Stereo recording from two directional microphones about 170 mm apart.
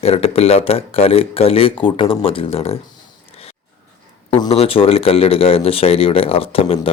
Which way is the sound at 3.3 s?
35° left (ahead or behind).